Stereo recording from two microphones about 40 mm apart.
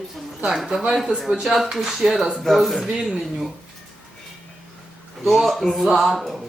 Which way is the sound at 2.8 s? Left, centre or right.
Centre.